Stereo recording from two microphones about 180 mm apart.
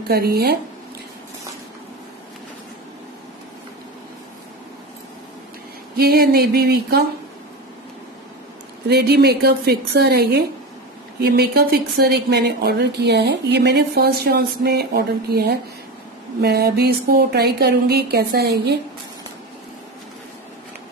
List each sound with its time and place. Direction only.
0.1 s speech: 60° right (ahead or behind)
5.9 s speech: 55° right (ahead or behind)
8.8 s speech: 60° right (ahead or behind)